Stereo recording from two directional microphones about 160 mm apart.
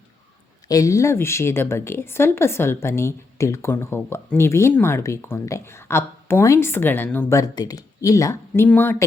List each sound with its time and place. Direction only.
0.7 s speech: 20° left (ahead or behind)